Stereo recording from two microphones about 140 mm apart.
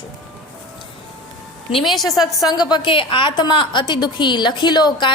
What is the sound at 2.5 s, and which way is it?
A woman's voice, 30° left (ahead or behind).